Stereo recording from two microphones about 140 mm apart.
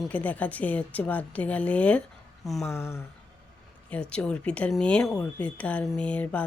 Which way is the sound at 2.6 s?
20° left (ahead or behind).